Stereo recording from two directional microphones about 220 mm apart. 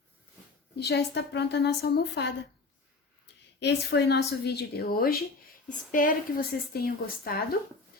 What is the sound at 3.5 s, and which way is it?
A woman's voice, 50° left (ahead or behind).